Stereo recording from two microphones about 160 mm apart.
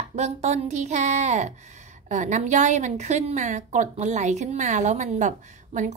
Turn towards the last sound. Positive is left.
turn(degrees=-50)  # may be behind; listen again after turning